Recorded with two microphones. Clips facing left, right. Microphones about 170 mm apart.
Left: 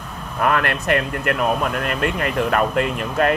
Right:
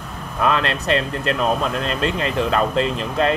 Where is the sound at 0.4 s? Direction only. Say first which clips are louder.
Even; 25° right (ahead or behind).